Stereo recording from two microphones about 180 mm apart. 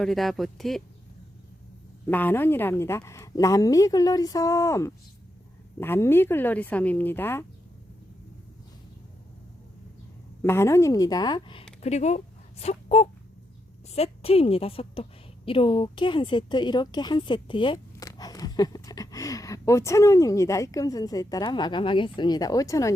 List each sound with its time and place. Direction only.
0.0 s speech: centre (ahead or behind)
2.0 s a woman's voice: 10° left (ahead or behind)
10.4 s a woman's voice: 15° left (ahead or behind)
11.8 s a woman's voice: 40° left (ahead or behind); by 22.9 s 20° left (ahead or behind)